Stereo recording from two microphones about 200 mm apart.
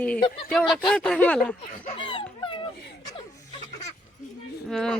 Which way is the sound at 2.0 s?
25° left (ahead or behind).